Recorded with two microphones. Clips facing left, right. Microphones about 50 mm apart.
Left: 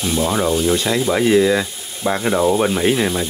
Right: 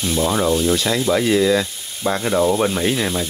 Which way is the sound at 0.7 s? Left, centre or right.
Centre.